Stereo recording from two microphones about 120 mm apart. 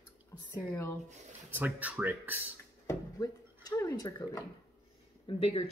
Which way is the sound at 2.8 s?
25° left (ahead or behind).